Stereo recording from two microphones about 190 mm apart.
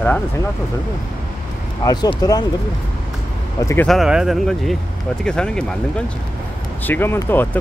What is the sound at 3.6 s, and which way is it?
Speech, 15° left (ahead or behind).